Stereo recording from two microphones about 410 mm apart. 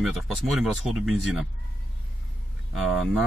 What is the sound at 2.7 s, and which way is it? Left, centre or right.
Speech, centre.